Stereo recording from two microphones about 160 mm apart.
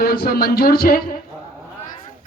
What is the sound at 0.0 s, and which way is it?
Speech, 75° left (ahead or behind).